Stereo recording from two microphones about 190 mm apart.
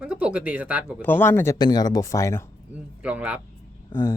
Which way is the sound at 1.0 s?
10° left (ahead or behind).